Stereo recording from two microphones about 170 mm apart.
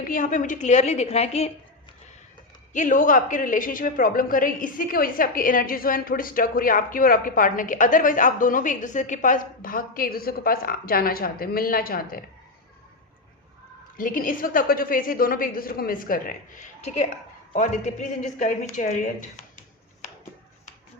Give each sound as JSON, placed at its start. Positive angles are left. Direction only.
{"t": 0.1, "sound": "a woman's voice", "side_deg": 50}
{"t": 2.7, "sound": "a woman's voice", "side_deg": 50}
{"t": 13.9, "sound": "a woman's voice", "side_deg": 55}
{"t": 20.0, "sound": "a sound", "side_deg": 45}